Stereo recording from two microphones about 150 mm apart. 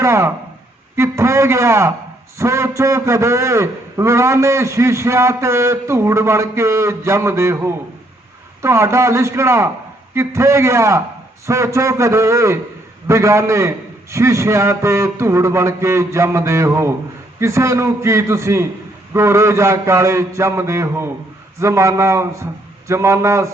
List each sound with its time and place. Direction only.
0.0 s a man's voice: 20° right (ahead or behind)